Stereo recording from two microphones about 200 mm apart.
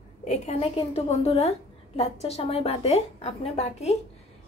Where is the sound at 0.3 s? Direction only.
30° left (ahead or behind).